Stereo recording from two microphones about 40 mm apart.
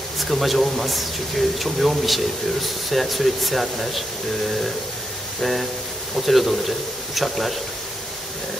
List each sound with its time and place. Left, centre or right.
0.2 s speech: centre
5.4 s speech: centre